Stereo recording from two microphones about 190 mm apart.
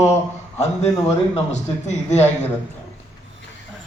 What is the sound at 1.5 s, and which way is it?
Speech, 35° left (ahead or behind).